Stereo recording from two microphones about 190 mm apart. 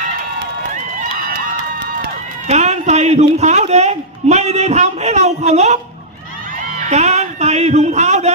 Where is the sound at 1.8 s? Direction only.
65° right (ahead or behind).